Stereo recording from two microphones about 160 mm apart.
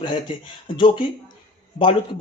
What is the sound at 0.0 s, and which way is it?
Speech, 30° left (ahead or behind).